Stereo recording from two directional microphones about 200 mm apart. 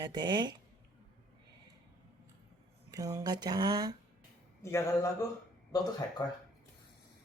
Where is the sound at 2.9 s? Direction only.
20° right (ahead or behind).